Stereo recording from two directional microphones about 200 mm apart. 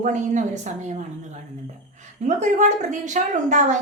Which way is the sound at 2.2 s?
35° right (ahead or behind).